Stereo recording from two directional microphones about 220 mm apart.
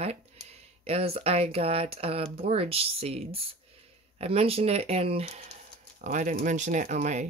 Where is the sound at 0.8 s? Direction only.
25° right (ahead or behind).